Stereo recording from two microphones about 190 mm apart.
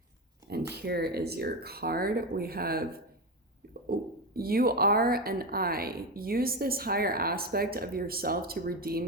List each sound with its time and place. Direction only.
0.7 s speech: 55° right (ahead or behind)
3.8 s speech: 50° right (ahead or behind)